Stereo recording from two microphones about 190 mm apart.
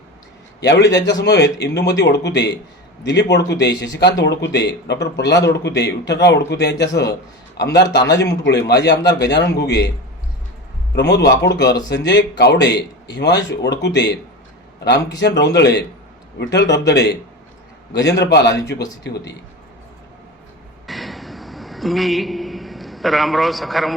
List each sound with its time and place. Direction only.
0.6 s a man's voice: 65° left (ahead or behind)
10.9 s a man's voice: 65° left (ahead or behind)
20.8 s a sound: centre (ahead or behind)